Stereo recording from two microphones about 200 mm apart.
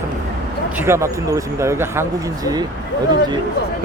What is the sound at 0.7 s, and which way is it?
Speech, 15° right (ahead or behind).